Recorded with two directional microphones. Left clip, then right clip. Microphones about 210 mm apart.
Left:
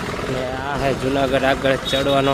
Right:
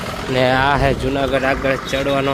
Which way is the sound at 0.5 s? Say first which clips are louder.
Right 10 dB; 25° right (ahead or behind).